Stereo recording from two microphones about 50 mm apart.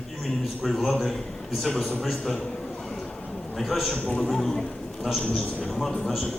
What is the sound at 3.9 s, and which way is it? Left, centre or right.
Speech, left.